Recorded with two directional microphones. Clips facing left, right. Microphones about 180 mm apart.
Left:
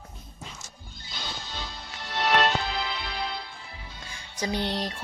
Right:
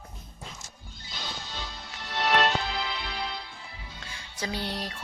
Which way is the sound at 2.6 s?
40° left (ahead or behind).